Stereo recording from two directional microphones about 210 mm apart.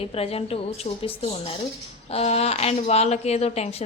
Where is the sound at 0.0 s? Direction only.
25° left (ahead or behind).